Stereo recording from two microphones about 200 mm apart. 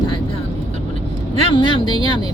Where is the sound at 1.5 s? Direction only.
25° left (ahead or behind).